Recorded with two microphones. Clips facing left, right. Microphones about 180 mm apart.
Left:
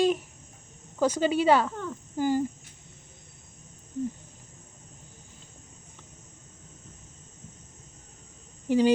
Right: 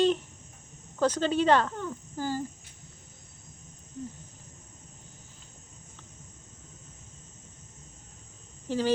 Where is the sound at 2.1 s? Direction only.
15° left (ahead or behind).